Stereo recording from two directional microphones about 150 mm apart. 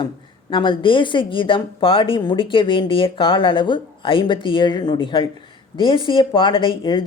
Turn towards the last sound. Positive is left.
turn(degrees=30)  # may be behind; listen again after turning